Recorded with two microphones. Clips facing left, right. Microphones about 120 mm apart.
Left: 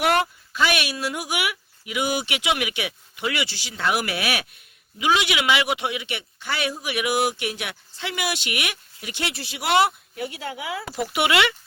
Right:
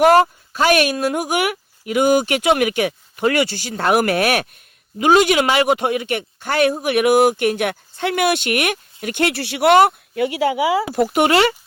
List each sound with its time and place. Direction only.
0.0 s speech: 40° right (ahead or behind)
10.2 s speech: 80° right
10.9 s speech: 45° right (ahead or behind)